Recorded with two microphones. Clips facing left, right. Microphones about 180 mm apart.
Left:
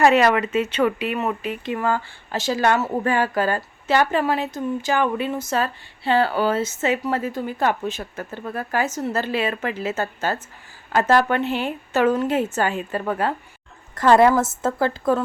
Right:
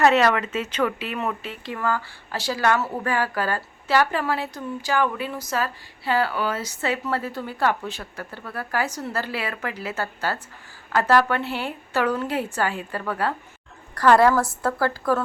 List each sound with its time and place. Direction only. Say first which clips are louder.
0.0 s speech: left 2 dB; 10° left (ahead or behind)